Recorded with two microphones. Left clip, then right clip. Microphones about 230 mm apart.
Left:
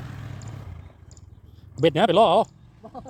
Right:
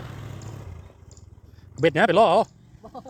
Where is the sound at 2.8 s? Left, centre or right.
Centre.